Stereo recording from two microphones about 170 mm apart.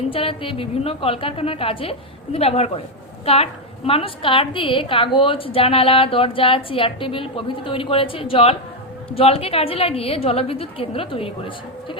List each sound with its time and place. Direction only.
0.1 s a woman's voice: 35° left (ahead or behind)